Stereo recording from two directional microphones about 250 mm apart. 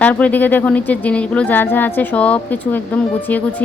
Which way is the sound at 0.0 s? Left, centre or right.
Centre.